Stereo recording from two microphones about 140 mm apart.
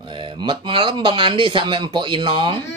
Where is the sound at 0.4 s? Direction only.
35° right (ahead or behind).